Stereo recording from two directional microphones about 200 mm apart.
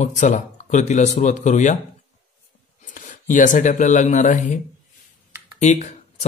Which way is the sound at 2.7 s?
40° left (ahead or behind).